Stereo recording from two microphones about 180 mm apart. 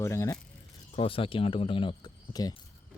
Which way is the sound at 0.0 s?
15° left (ahead or behind).